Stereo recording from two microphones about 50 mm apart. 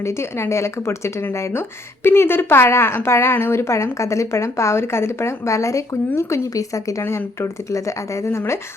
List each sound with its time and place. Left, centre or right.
0.0 s speech: left
2.0 s a woman's voice: left